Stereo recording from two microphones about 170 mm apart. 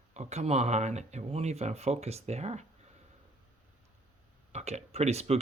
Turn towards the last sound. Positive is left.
turn(degrees=-40)  # may be behind; listen again after turning